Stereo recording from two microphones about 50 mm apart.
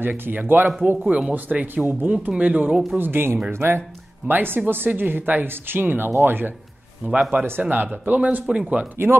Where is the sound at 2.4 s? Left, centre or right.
Right.